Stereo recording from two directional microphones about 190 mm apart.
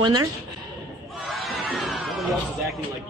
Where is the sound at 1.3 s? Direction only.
Centre (ahead or behind).